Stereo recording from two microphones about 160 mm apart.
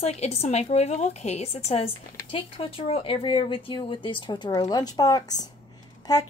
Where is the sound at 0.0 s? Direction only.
40° left (ahead or behind).